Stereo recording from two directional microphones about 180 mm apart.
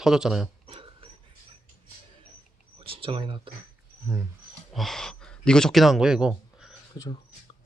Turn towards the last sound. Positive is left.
turn(degrees=20)  # may be behind; listen again after turning